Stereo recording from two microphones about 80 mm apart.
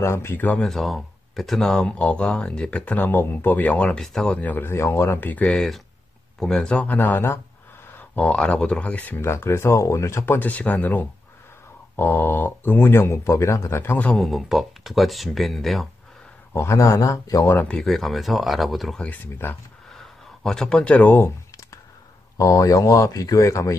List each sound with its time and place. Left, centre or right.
0.0 s speech: left
0.5 s speech: centre
4.4 s speech: left
5.4 s speech: centre; by 7.3 s left
8.2 s speech: centre
9.2 s speech: left
10.5 s speech: centre
14.1 s speech: centre
16.5 s speech: left
17.6 s speech: centre
19.2 s speech: left
19.9 s a sound: centre
21.1 s speech: left